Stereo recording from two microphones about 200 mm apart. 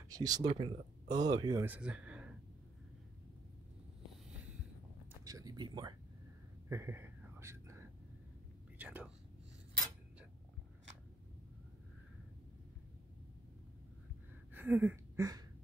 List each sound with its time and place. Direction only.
0.1 s speech: 20° right (ahead or behind)
1.6 s speech: 5° right (ahead or behind)
5.2 s speech: 20° right (ahead or behind)
6.7 s whispering: 10° right (ahead or behind)
14.5 s a sound: 10° right (ahead or behind)